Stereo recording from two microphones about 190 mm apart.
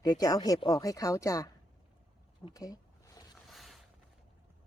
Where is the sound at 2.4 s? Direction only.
20° left (ahead or behind).